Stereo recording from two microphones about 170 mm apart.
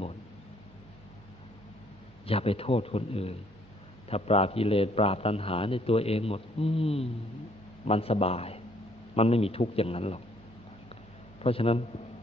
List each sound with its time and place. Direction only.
2.2 s a man's voice: 35° left (ahead or behind)
11.4 s a man's voice: 35° left (ahead or behind)